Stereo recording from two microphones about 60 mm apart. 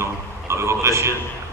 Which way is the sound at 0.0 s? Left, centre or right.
Right.